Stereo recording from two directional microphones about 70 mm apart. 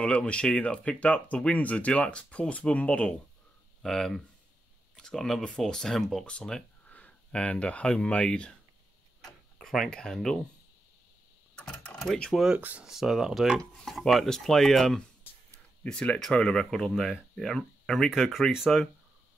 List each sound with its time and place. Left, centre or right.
0.0 s speech: centre
3.8 s speech: centre
11.5 s typing: centre
12.5 s speech: right
12.8 s speech: centre